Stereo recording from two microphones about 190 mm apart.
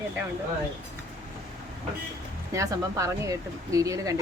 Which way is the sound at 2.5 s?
15° right (ahead or behind).